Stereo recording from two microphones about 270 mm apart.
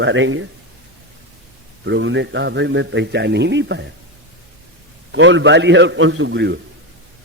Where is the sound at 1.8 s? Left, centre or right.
Right.